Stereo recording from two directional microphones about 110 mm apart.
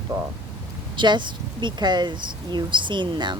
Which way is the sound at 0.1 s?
35° right (ahead or behind).